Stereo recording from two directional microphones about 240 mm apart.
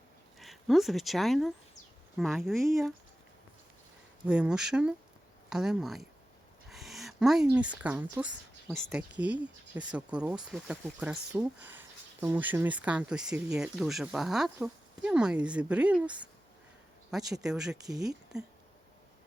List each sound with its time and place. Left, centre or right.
0.3 s speech: centre
4.3 s speech: centre
6.7 s a sound: centre
7.5 s speech: centre
17.4 s speech: centre
17.8 s speech: centre